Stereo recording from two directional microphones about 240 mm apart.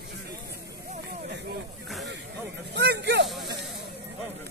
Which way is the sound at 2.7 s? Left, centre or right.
Right.